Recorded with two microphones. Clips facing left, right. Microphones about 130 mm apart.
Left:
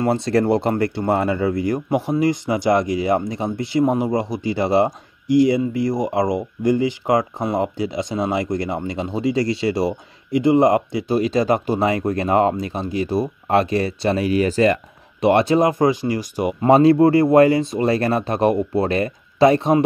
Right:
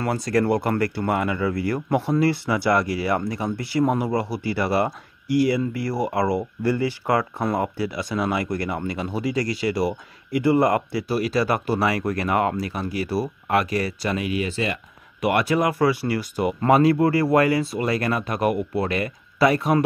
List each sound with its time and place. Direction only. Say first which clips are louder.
0.0 s speech: left 4 dB; 25° left (ahead or behind); by 14.8 s 45° left (ahead or behind)
15.2 s speech: left 5 dB; 25° left (ahead or behind)